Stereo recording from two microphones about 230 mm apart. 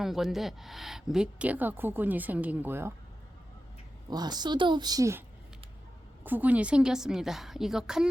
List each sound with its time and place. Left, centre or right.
0.0 s a woman's voice: centre
4.1 s a woman's voice: centre
6.2 s a woman's voice: centre